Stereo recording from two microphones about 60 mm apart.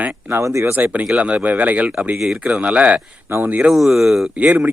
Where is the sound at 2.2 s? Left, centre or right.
Centre.